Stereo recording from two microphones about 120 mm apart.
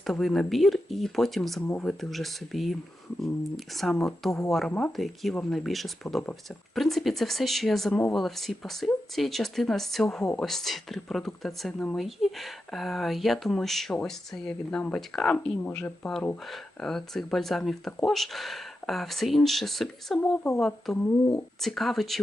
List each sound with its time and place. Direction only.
0.0 s speech: centre (ahead or behind)
1.6 s speech: 20° left (ahead or behind)
1.9 s speech: centre (ahead or behind)